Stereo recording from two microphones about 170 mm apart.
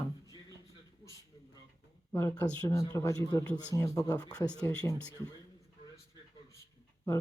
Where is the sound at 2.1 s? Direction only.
15° left (ahead or behind).